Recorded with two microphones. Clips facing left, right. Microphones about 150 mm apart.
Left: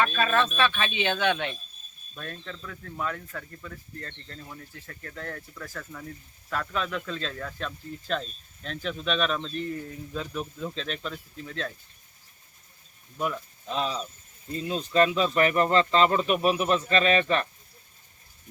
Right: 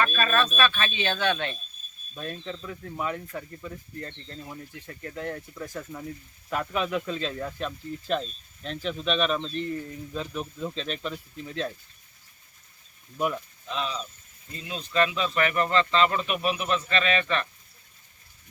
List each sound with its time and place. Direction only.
0.0 s speech: 15° left (ahead or behind)
2.1 s speech: 20° right (ahead or behind)
8.6 s speech: centre (ahead or behind)
13.1 s speech: 10° right (ahead or behind)
13.7 s speech: 40° left (ahead or behind)